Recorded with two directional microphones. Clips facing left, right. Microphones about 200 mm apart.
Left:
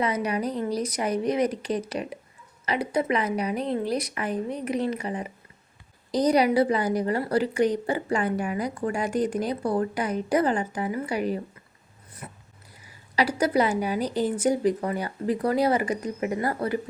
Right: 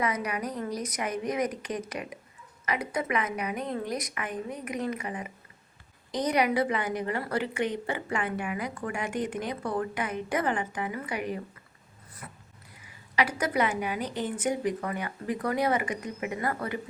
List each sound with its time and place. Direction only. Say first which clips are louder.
0.0 s a woman's voice: left 4 dB; 30° left (ahead or behind)
12.2 s a sound: left 4 dB; 25° left (ahead or behind)
13.1 s a woman's voice: left 4 dB; 35° left (ahead or behind)